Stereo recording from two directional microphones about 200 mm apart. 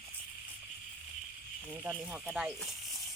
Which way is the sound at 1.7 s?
5° right (ahead or behind).